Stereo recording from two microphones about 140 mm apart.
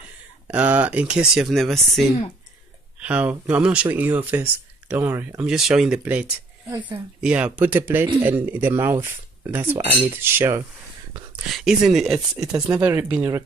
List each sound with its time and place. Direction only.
0.5 s speech: 10° right (ahead or behind)
3.0 s speech: 10° right (ahead or behind)
11.4 s speech: centre (ahead or behind); by 13.4 s 20° right (ahead or behind)